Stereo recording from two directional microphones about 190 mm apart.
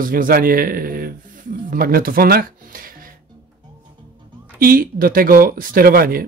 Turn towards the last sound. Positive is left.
turn(degrees=-50)  # may be behind; listen again after turning